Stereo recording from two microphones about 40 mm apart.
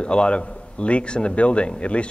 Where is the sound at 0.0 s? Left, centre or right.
Left.